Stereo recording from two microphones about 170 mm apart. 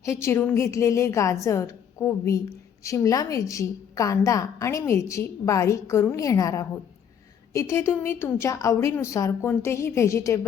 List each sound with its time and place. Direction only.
0.0 s a woman's voice: 15° left (ahead or behind)